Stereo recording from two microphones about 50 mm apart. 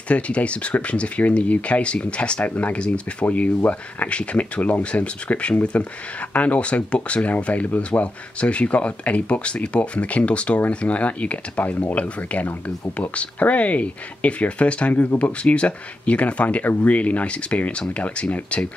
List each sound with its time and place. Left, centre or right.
0.1 s speech: left